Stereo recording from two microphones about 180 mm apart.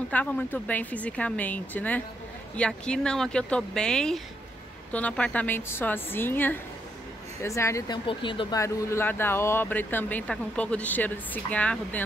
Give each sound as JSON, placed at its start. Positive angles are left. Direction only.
{"t": 0.1, "sound": "speech", "side_deg": 10}
{"t": 8.1, "sound": "speech", "side_deg": 30}